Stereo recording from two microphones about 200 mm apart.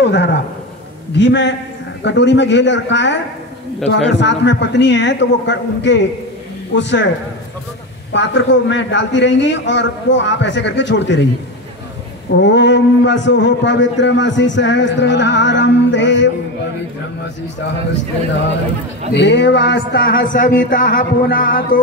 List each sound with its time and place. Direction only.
0.0 s a man's voice: 60° left (ahead or behind)
8.1 s a man's voice: 65° left (ahead or behind)
12.4 s a man's voice: 65° left (ahead or behind)
19.1 s a man's voice: 60° left (ahead or behind)